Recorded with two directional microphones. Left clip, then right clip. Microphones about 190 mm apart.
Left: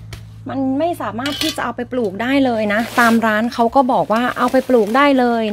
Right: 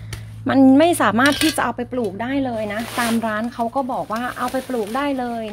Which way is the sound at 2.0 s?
35° left (ahead or behind).